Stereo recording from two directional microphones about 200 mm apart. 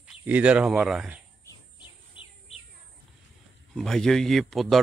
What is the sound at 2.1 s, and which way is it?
Bird, 30° left (ahead or behind).